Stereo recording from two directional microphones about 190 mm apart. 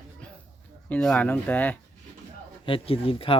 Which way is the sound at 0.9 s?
5° left (ahead or behind).